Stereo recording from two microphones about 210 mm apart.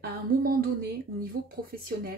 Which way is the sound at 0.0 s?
45° right (ahead or behind).